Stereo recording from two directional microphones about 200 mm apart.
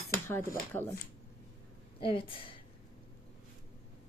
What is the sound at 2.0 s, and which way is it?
Speech, 25° left (ahead or behind).